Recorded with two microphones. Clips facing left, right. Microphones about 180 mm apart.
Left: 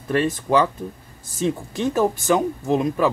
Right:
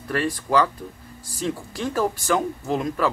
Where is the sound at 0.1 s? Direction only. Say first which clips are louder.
Left 3 dB; 20° left (ahead or behind).